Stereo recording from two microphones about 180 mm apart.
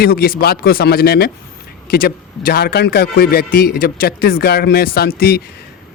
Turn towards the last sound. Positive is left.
turn(degrees=60)  # may be behind; listen again after turning